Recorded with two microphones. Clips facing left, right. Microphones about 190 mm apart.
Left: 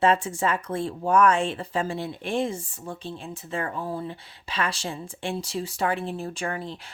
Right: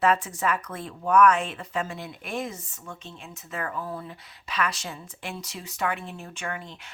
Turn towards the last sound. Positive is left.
turn(degrees=35)  # may be behind; listen again after turning